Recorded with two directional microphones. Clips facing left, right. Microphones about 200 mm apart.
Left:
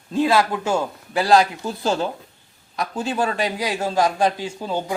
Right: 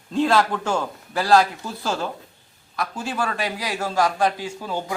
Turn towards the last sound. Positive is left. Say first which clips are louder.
# left 3 dB
turn(degrees=25)  # may be behind; listen again after turning